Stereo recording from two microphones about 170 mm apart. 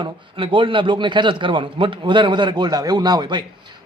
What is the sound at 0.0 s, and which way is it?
A man's voice, 30° right (ahead or behind).